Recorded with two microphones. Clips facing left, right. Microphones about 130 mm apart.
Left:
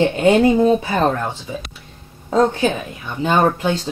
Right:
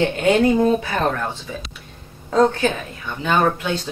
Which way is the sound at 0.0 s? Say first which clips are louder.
Left 3 dB; 25° left (ahead or behind).